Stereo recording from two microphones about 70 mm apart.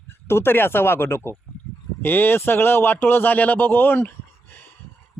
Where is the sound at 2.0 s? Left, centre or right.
Left.